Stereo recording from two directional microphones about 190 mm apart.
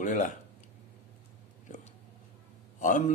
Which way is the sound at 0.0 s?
40° left (ahead or behind).